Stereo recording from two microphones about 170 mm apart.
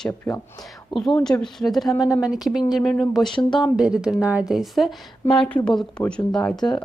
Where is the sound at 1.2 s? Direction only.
5° left (ahead or behind).